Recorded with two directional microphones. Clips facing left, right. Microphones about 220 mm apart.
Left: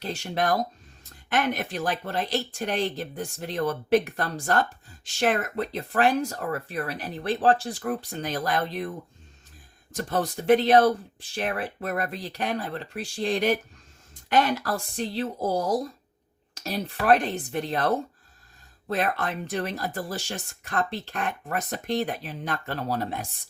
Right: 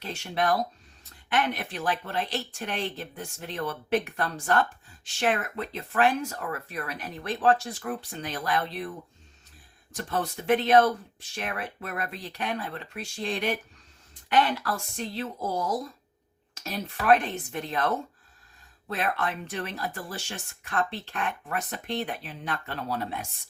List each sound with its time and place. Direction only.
0.0 s speech: 35° left (ahead or behind)
9.9 s speech: 40° left (ahead or behind)